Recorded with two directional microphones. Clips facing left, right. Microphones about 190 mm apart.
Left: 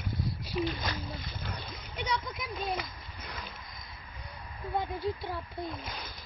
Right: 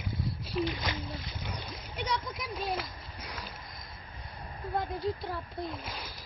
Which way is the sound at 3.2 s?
5° right (ahead or behind).